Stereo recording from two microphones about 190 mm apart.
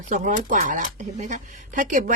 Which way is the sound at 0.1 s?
40° right (ahead or behind).